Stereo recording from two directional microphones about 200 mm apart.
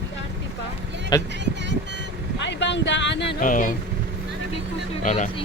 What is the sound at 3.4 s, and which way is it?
Speech, 40° left (ahead or behind).